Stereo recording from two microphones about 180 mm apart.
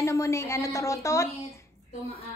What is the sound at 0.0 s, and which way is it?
A woman's voice, 15° left (ahead or behind).